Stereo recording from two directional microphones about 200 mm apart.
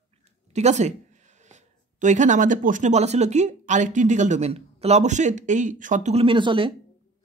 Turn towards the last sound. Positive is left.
turn(degrees=-25)  # may be behind; listen again after turning